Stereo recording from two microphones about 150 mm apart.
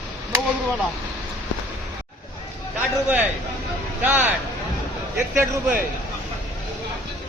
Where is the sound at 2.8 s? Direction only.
10° right (ahead or behind).